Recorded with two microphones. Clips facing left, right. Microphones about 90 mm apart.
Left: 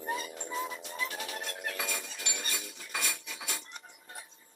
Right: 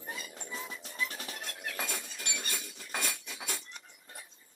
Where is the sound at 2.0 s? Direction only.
40° left (ahead or behind).